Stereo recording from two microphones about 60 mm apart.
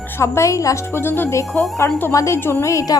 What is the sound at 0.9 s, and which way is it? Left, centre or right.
Speech, left.